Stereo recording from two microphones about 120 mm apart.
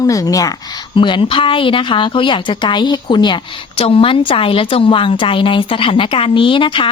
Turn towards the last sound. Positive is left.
turn(degrees=45)  # may be behind; listen again after turning